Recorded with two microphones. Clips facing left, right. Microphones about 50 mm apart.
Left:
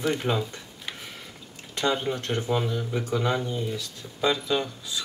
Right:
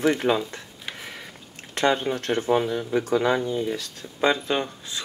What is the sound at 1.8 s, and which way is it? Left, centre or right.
Speech, right.